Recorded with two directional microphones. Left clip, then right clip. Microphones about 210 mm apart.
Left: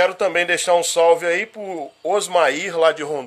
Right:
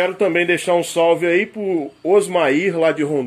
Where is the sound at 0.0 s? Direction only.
15° left (ahead or behind).